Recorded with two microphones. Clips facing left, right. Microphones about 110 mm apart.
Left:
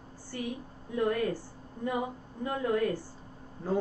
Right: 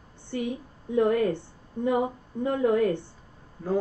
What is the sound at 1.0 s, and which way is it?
A woman's voice, 25° right (ahead or behind).